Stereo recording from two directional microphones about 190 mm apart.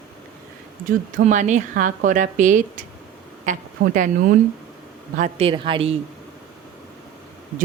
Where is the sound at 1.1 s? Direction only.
40° right (ahead or behind).